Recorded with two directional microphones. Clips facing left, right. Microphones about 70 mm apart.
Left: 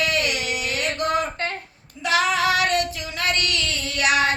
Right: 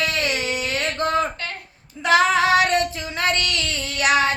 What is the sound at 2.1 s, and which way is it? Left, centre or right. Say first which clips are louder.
Child singing: right 4 dB; right.